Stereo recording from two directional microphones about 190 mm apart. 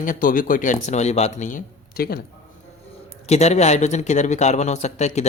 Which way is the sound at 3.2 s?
35° left (ahead or behind).